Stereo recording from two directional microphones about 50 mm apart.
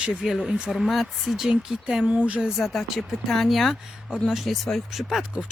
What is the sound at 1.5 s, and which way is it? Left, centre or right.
Speech, centre.